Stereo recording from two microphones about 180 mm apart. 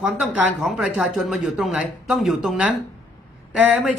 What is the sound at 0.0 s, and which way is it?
Speech, centre (ahead or behind).